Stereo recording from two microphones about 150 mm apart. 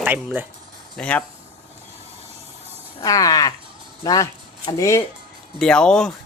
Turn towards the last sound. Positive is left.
turn(degrees=5)  # may be behind; listen again after turning